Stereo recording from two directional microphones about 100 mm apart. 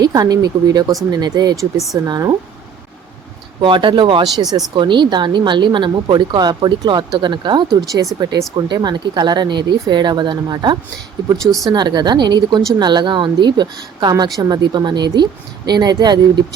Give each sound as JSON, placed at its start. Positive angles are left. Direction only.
{"t": 0.0, "sound": "speech", "side_deg": -40}
{"t": 3.6, "sound": "speech", "side_deg": -55}